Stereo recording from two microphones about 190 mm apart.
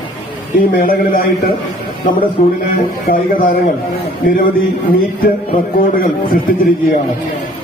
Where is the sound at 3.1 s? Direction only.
50° left (ahead or behind).